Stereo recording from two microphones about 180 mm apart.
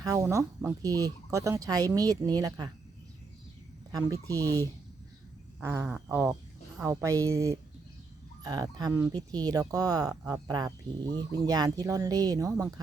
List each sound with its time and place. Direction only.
0.0 s speech: 15° right (ahead or behind)
3.9 s speech: 20° right (ahead or behind)
5.5 s a woman's voice: 10° right (ahead or behind)